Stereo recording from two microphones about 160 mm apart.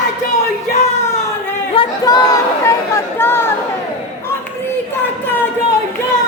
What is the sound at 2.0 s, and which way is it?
Chatter, 25° left (ahead or behind).